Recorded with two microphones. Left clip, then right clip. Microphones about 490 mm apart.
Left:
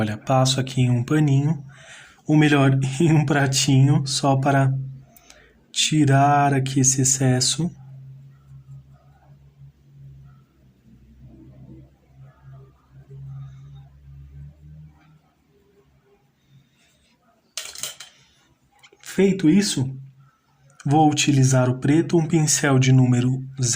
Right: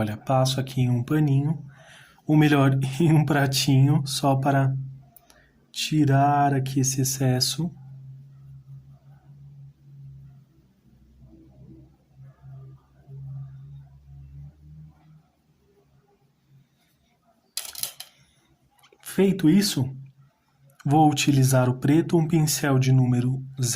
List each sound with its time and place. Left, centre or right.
0.0 s speech: right
18.8 s a sound: right
20.7 s speech: right